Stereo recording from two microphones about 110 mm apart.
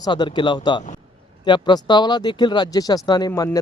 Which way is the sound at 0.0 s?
45° left (ahead or behind).